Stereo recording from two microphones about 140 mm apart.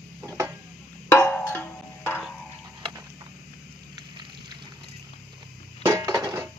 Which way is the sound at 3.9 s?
30° right (ahead or behind).